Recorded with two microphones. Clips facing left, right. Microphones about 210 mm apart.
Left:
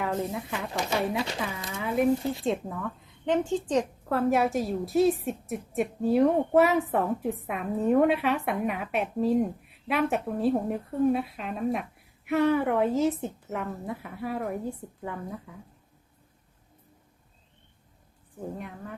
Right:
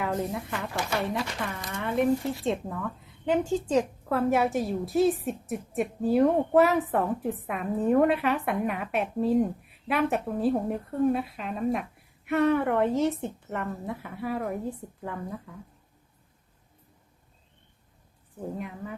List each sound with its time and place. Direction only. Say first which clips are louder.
0.0 s a woman's voice: even; centre (ahead or behind)
18.3 s a woman's voice: right 2 dB; centre (ahead or behind)